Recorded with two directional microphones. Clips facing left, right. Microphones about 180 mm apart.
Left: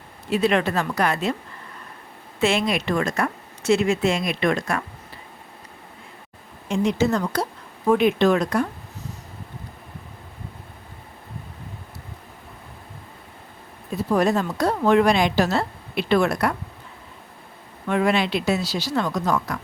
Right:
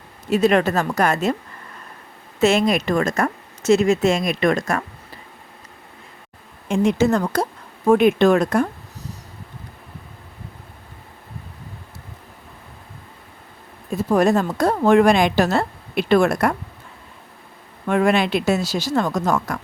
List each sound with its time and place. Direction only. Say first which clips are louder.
0.3 s speech: right 4 dB; 45° right (ahead or behind)
2.4 s speech: right 5 dB; 45° right (ahead or behind)
6.7 s speech: right 3 dB; 50° right (ahead or behind)
13.9 s speech: right 3 dB; 45° right (ahead or behind)
17.8 s speech: right 3 dB; 50° right (ahead or behind)